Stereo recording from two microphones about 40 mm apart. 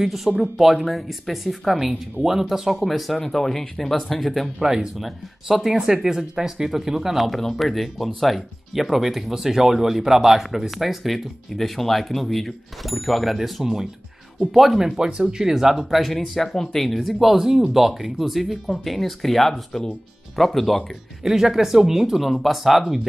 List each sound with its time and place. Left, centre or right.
0.0 s speech: centre
4.6 s speech: centre
15.0 s speech: centre
21.2 s speech: centre